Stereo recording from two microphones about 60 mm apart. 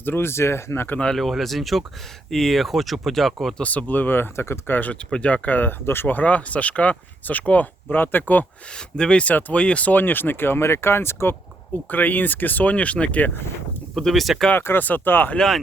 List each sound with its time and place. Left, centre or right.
0.0 s speech: left
1.1 s speech: centre
3.6 s speech: left
4.6 s speech: left
5.8 s speech: left
9.0 s speech: centre; by 11.3 s left
11.9 s speech: left
13.9 s speech: centre
14.5 s speech: left
15.4 s speech: centre